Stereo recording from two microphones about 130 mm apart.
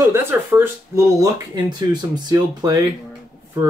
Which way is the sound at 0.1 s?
15° right (ahead or behind).